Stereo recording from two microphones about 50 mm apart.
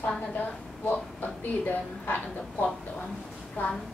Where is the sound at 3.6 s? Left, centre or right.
Left.